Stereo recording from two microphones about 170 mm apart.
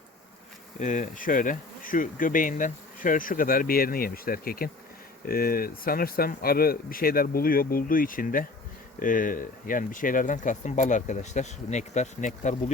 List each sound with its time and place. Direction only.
0.8 s bee: 50° left (ahead or behind)
5.2 s speech: 60° left (ahead or behind)
9.0 s bee: 55° left (ahead or behind)